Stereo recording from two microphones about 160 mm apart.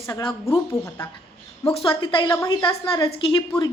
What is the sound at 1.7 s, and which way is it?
Speech, 35° left (ahead or behind).